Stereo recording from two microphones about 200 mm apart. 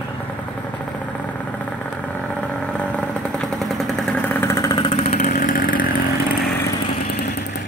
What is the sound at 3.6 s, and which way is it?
Vehicle, 5° left (ahead or behind).